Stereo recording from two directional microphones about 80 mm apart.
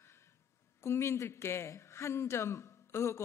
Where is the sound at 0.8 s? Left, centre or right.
Left.